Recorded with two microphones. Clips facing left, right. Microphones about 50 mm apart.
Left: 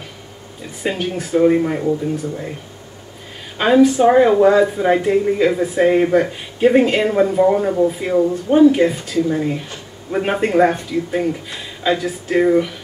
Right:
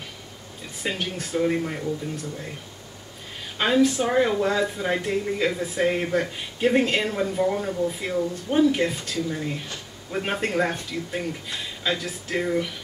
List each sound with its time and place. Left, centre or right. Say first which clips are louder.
0.8 s speech: left 7 dB; centre
1.4 s speech: left 10 dB; left
3.5 s speech: left 8 dB; centre
7.2 s speech: left 10 dB; left
8.7 s speech: left 9 dB; centre
10.2 s speech: left 10 dB; centre